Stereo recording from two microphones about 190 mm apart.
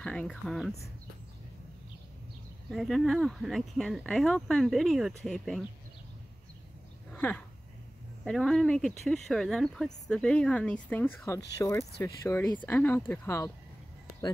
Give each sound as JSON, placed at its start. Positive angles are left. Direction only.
{"t": 0.0, "sound": "speech", "side_deg": 5}
{"t": 2.7, "sound": "speech", "side_deg": 0}
{"t": 7.1, "sound": "dog", "side_deg": 10}
{"t": 8.2, "sound": "speech", "side_deg": 0}